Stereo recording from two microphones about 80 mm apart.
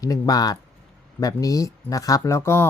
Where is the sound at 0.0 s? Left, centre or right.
Left.